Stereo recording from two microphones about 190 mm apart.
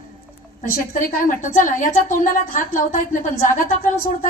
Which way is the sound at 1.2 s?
45° left (ahead or behind).